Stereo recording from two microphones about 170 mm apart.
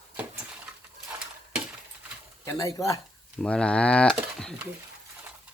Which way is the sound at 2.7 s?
20° left (ahead or behind).